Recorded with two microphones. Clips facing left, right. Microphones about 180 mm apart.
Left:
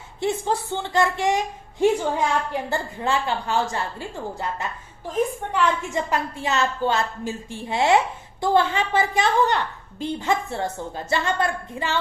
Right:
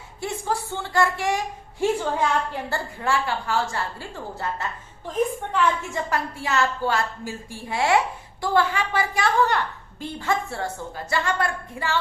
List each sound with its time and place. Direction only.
0.2 s a woman's voice: 20° left (ahead or behind)